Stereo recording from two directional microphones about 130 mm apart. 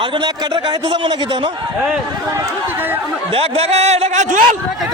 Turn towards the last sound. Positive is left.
turn(degrees=-70)  # may be behind; listen again after turning